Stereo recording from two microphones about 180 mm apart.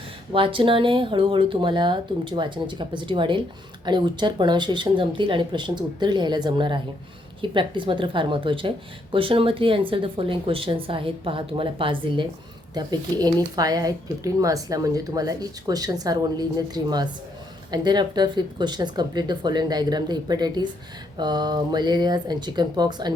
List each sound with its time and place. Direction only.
0.3 s speech: 30° right (ahead or behind)